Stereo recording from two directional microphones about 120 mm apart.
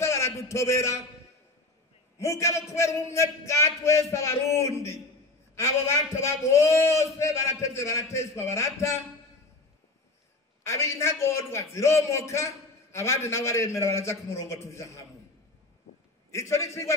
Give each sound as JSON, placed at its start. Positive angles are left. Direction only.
{"t": 0.0, "sound": "a sound", "side_deg": 25}
{"t": 2.1, "sound": "a man's voice", "side_deg": 25}
{"t": 10.6, "sound": "a man's voice", "side_deg": 25}
{"t": 16.3, "sound": "a man's voice", "side_deg": 25}